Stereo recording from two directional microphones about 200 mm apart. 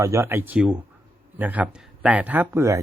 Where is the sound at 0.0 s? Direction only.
15° right (ahead or behind).